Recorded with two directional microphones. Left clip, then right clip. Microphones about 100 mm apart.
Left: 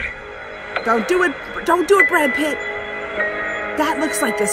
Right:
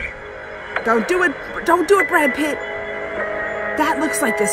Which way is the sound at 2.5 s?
45° left (ahead or behind).